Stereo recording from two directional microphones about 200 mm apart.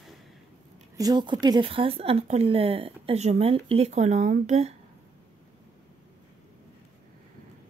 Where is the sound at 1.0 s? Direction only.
20° right (ahead or behind).